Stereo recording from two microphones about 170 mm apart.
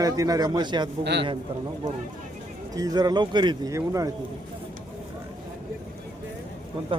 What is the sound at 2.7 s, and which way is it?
Speech, 20° right (ahead or behind).